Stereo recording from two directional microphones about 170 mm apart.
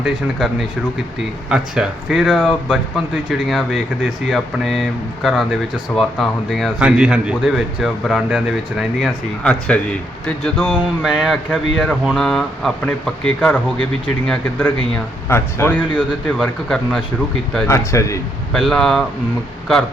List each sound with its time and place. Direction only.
0.0 s speech: centre (ahead or behind)
15.3 s speech: 15° left (ahead or behind)
17.7 s speech: 15° left (ahead or behind)
18.5 s speech: centre (ahead or behind)